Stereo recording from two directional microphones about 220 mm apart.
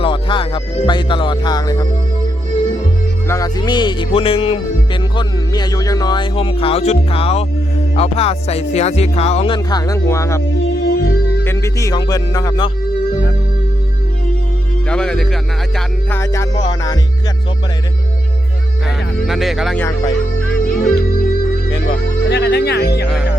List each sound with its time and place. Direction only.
0.0 s music: 20° left (ahead or behind)
3.2 s music: 15° left (ahead or behind)
10.6 s music: 50° left (ahead or behind)
11.4 s music: 15° left (ahead or behind)
14.8 s speech: 5° left (ahead or behind)
16.0 s music: 10° left (ahead or behind)
19.2 s speech: centre (ahead or behind)
21.8 s speech: 50° left (ahead or behind)